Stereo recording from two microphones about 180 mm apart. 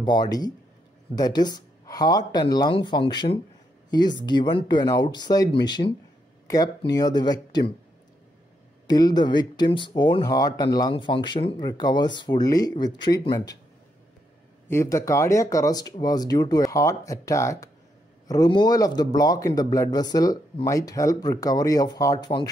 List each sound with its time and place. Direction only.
0.0 s speech: 25° left (ahead or behind)
8.8 s speech: 20° left (ahead or behind)
14.7 s speech: 15° left (ahead or behind)